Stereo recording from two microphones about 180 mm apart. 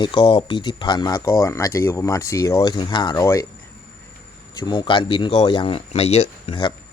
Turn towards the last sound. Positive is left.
turn(degrees=30)  # may be behind; listen again after turning